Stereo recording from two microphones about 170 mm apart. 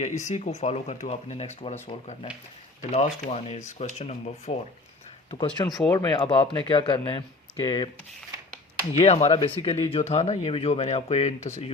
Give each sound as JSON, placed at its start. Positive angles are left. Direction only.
{"t": 0.0, "sound": "speech", "side_deg": 45}
{"t": 2.9, "sound": "speech", "side_deg": 40}
{"t": 5.3, "sound": "speech", "side_deg": 30}
{"t": 5.9, "sound": "speech", "side_deg": 20}
{"t": 6.1, "sound": "speech", "side_deg": 30}
{"t": 9.0, "sound": "speech", "side_deg": 35}